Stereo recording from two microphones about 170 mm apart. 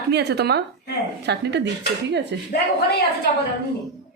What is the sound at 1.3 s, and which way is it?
Speech, 90° right.